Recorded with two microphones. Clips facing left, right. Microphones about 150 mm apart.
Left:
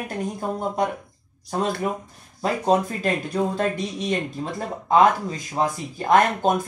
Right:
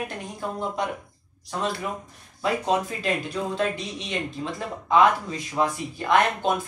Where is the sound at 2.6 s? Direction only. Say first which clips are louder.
Left 4 dB; 40° left (ahead or behind).